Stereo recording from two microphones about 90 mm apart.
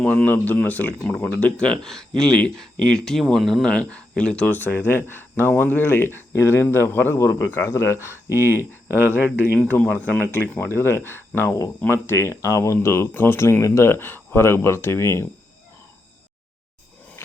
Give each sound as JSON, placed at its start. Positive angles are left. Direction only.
{"t": 0.0, "sound": "speech", "side_deg": 15}
{"t": 8.3, "sound": "speech", "side_deg": -25}
{"t": 9.1, "sound": "speech", "side_deg": 20}